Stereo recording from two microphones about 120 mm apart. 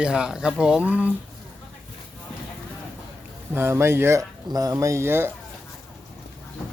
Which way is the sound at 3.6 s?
20° right (ahead or behind).